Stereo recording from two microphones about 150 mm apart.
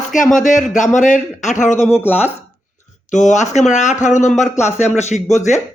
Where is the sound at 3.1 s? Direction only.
55° left (ahead or behind).